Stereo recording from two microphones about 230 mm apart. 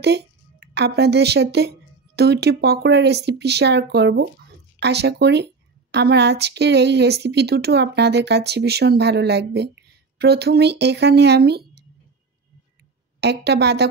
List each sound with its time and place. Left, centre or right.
0.0 s a woman's voice: right
13.2 s a woman's voice: right